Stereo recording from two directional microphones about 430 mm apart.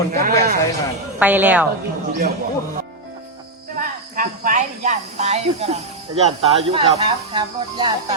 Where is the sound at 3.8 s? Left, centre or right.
Centre.